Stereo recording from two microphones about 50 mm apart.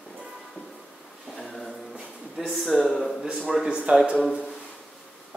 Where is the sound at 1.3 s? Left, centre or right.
Centre.